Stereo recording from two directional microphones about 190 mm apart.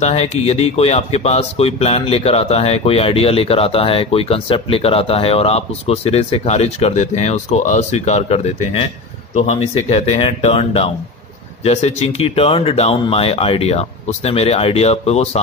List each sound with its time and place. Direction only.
0.0 s speech: 35° left (ahead or behind)